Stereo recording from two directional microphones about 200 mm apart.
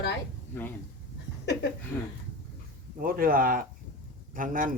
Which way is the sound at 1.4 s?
55° left (ahead or behind).